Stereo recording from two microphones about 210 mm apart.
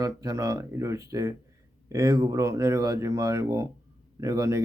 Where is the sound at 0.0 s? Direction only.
15° right (ahead or behind).